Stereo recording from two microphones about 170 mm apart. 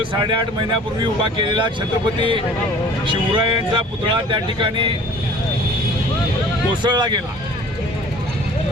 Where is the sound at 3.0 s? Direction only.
30° right (ahead or behind).